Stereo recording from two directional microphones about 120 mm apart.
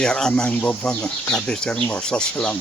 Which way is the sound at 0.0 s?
5° left (ahead or behind).